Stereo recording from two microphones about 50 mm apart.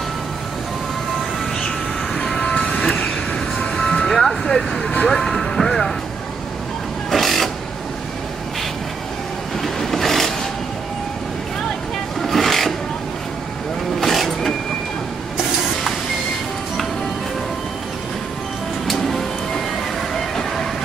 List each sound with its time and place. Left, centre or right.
2.1 s music: centre
2.4 s vehicle: centre
5.5 s music: centre
7.1 s vehicle: centre
9.6 s vehicle: centre
12.2 s filing: centre
13.9 s vehicle: centre
18.9 s music: centre